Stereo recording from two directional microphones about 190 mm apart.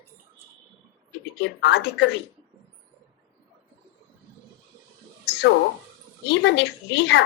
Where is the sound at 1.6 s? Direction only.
65° left (ahead or behind).